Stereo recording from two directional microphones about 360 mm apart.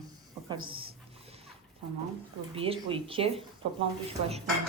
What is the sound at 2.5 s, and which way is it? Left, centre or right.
Speech, centre.